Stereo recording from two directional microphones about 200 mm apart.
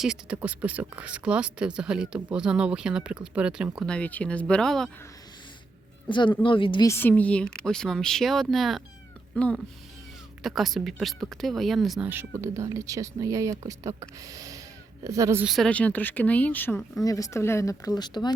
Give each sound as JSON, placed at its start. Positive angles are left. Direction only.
{"t": 0.0, "sound": "speech", "side_deg": -5}
{"t": 6.1, "sound": "speech", "side_deg": 25}
{"t": 15.4, "sound": "speech", "side_deg": 0}